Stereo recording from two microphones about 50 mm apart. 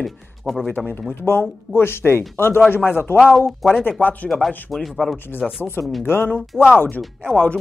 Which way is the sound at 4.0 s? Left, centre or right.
Left.